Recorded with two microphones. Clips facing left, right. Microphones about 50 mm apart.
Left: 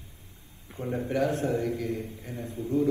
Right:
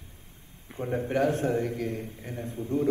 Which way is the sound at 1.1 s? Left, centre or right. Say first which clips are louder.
Right 1 dB; right.